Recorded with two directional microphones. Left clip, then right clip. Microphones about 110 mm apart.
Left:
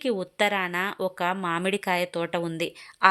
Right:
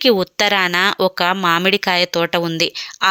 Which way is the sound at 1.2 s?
30° right (ahead or behind).